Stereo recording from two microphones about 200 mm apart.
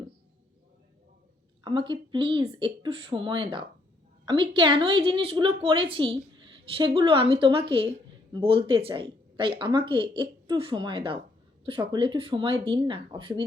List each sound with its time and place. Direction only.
1.6 s a woman's voice: 25° right (ahead or behind)